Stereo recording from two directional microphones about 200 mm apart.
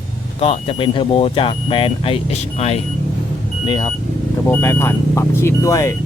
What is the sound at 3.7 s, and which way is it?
Speech, 20° left (ahead or behind).